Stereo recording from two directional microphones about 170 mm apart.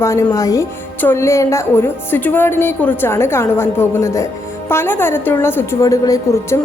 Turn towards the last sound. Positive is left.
turn(degrees=20)  # may be behind; listen again after turning